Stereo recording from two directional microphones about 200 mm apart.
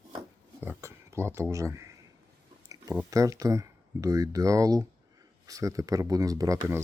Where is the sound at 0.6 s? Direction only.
10° right (ahead or behind).